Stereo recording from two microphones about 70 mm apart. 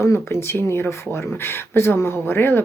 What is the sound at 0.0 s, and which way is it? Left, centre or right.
Speech, left.